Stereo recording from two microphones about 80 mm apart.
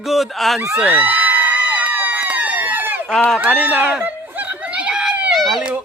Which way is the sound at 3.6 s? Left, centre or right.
Right.